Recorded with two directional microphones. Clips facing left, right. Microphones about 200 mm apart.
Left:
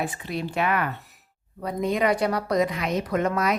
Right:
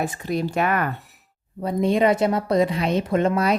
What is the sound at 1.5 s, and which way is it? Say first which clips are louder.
Speech: right 5 dB; 30° right (ahead or behind).